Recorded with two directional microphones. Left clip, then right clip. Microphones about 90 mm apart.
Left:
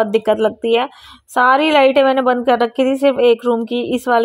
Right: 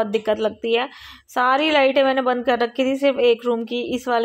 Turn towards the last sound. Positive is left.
turn(degrees=50)  # may be behind; listen again after turning